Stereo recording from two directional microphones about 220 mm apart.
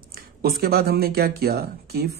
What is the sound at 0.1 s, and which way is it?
Speech, 45° right (ahead or behind).